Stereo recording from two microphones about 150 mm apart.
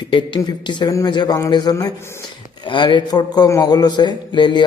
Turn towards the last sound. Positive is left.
turn(degrees=30)  # may be behind; listen again after turning